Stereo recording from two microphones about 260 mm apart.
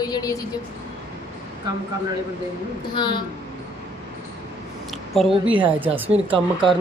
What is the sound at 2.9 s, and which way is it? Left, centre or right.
Speech, centre.